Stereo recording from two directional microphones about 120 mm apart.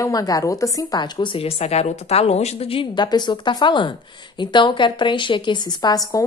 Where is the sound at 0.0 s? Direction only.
30° left (ahead or behind).